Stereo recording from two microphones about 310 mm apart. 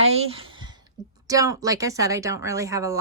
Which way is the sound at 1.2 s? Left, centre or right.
Centre.